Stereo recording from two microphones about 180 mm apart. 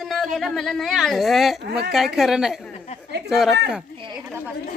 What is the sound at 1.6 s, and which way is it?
Speech, 65° right (ahead or behind).